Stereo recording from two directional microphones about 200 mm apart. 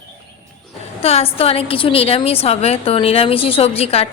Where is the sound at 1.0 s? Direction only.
30° left (ahead or behind).